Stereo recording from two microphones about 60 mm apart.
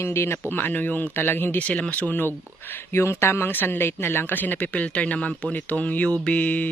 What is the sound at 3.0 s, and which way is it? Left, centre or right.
Speech, left.